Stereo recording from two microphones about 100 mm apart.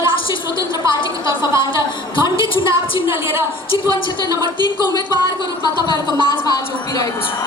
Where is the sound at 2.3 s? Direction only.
60° left (ahead or behind).